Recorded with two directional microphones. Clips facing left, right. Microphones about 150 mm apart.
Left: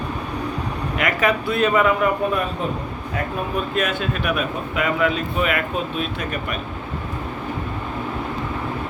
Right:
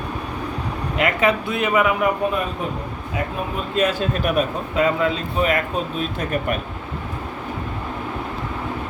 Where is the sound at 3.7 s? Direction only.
30° right (ahead or behind).